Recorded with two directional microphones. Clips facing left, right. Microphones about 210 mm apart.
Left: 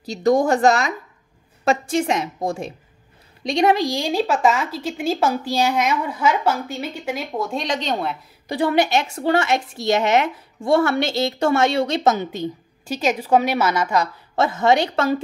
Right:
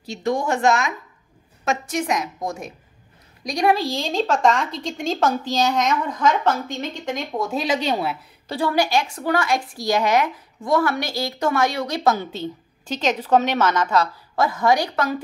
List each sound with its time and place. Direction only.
0.0 s a woman's voice: 40° left (ahead or behind); by 8.2 s 5° right (ahead or behind)
8.5 s a woman's voice: 20° left (ahead or behind)
14.3 s a woman's voice: 25° left (ahead or behind)